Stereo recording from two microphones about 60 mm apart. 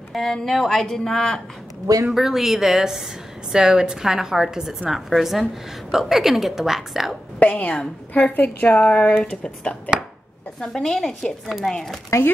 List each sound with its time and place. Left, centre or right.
0.1 s a woman's voice: centre
2.0 s a woman's voice: centre
7.3 s a sound: left
8.1 s a woman's voice: left
10.6 s a woman's voice: centre